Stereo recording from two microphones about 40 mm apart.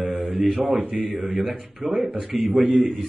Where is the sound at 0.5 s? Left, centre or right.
Right.